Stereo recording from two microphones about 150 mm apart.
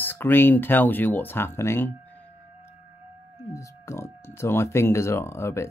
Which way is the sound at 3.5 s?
20° left (ahead or behind).